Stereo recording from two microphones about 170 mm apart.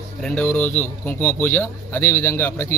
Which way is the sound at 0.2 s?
5° left (ahead or behind).